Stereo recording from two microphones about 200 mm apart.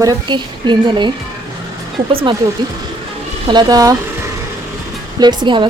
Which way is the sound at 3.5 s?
20° right (ahead or behind).